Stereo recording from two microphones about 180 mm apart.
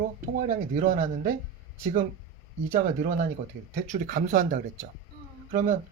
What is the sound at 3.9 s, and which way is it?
Speech, 45° right (ahead or behind).